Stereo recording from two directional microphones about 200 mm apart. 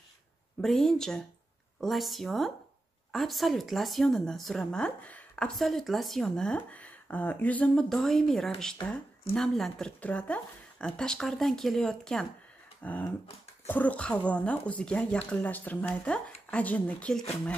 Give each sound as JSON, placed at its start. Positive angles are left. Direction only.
{"t": 0.6, "sound": "speech", "side_deg": 0}